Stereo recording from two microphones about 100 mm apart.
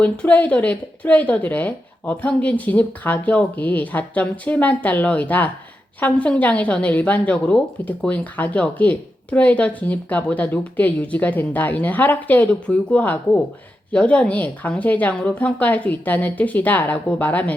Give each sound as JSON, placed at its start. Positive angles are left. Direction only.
{"t": 0.0, "sound": "a woman's voice", "side_deg": 15}